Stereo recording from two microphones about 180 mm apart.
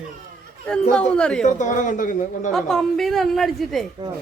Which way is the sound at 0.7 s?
5° left (ahead or behind).